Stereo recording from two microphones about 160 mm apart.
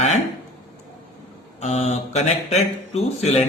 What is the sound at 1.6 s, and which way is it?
A man's voice, 45° left (ahead or behind).